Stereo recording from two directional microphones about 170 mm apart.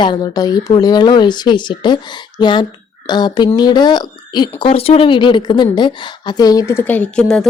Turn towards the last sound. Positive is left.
turn(degrees=5)  # may be behind; listen again after turning